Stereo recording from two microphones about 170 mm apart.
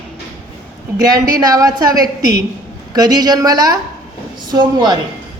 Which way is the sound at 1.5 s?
20° right (ahead or behind).